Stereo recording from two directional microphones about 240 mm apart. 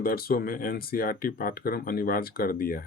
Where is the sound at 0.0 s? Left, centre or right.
Left.